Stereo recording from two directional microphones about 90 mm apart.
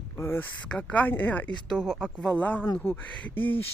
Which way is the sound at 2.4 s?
20° left (ahead or behind).